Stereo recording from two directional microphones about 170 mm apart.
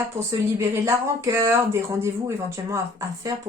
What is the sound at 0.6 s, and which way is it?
Speech, 15° right (ahead or behind).